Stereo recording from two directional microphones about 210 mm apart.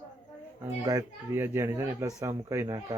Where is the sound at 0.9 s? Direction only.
15° right (ahead or behind).